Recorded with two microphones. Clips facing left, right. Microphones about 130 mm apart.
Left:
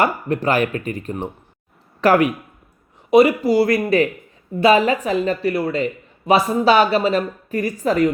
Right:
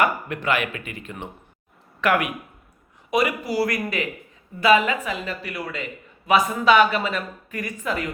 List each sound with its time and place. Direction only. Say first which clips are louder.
0.0 s speech: left 4 dB; 35° left (ahead or behind)